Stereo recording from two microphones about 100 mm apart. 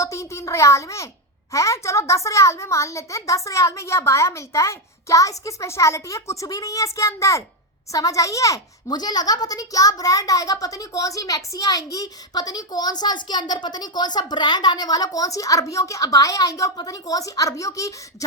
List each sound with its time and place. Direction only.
0.0 s a child's voice: 30° left (ahead or behind)